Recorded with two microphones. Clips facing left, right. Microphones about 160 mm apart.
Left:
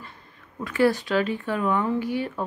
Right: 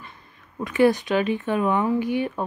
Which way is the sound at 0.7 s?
20° right (ahead or behind).